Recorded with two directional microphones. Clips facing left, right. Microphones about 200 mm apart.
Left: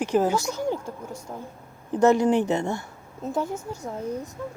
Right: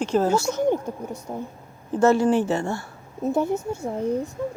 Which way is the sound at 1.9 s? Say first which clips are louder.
Right 1 dB; 15° left (ahead or behind).